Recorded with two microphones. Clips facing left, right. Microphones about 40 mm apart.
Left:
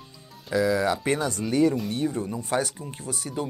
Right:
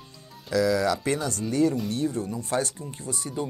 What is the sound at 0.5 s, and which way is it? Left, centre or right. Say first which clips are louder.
Speech: even; left.